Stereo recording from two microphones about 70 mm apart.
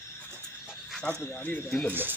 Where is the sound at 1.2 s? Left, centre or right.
Left.